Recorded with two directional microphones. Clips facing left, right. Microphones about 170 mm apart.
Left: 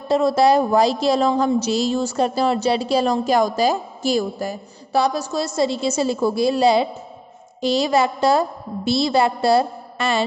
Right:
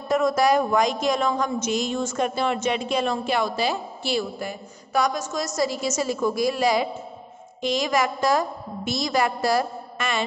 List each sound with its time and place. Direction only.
0.1 s a woman's voice: 30° left (ahead or behind)